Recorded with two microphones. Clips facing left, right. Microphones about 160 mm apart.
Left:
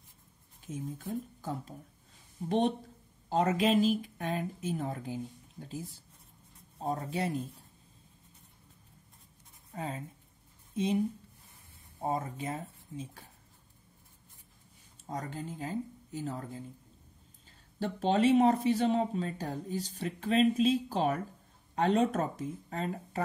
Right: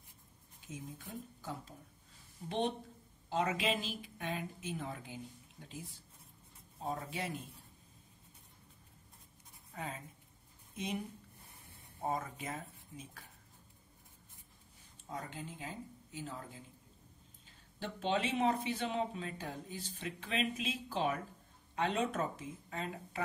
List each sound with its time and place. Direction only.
0.9 s speech: 45° left (ahead or behind)
9.8 s a woman's voice: 30° left (ahead or behind)
12.0 s speech: 30° left (ahead or behind)
15.0 s speech: 40° left (ahead or behind)
17.7 s speech: 40° left (ahead or behind)